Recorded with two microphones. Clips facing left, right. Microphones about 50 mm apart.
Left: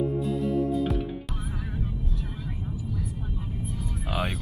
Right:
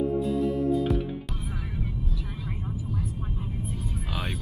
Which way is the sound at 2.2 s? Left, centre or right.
Right.